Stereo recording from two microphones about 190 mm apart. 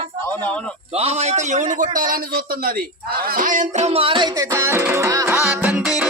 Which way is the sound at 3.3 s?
45° right (ahead or behind).